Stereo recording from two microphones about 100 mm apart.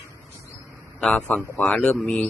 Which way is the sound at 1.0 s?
15° left (ahead or behind).